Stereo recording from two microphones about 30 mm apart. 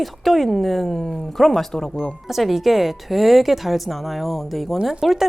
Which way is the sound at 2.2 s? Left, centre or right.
Centre.